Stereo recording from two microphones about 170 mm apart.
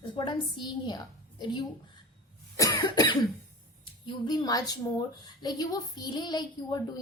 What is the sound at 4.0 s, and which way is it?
A woman's voice, 25° left (ahead or behind).